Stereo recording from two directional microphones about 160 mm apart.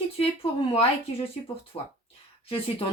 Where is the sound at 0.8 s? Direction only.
35° left (ahead or behind).